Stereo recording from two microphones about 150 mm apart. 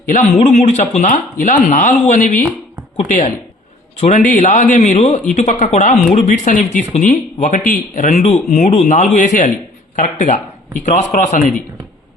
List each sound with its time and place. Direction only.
0.1 s speech: 50° left (ahead or behind)